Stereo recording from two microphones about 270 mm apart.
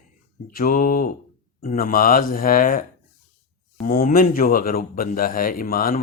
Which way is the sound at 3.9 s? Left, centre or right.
Left.